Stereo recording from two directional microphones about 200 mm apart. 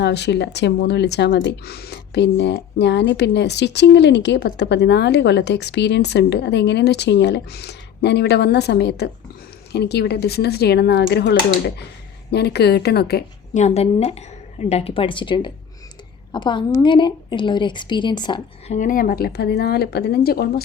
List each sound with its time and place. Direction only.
0.0 s a woman's voice: 60° left (ahead or behind)
13.5 s a woman's voice: 35° left (ahead or behind)
18.7 s a woman's voice: 40° left (ahead or behind)